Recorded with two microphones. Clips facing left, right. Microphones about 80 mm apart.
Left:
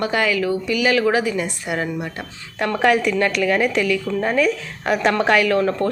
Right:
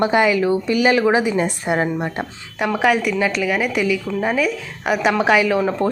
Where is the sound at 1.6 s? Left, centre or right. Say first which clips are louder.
Right 4 dB; right.